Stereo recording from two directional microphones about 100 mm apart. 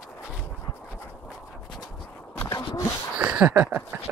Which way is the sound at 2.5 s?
50° left (ahead or behind).